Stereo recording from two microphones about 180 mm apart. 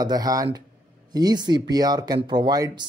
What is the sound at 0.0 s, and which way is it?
Speech, 20° right (ahead or behind).